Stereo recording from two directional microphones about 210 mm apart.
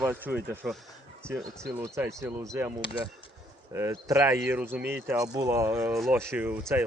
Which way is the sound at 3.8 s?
15° right (ahead or behind).